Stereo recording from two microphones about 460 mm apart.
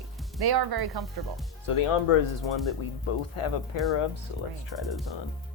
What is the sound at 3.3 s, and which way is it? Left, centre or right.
Speech, left.